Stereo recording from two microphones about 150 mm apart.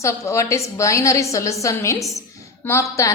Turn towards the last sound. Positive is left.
turn(degrees=20)  # may be behind; listen again after turning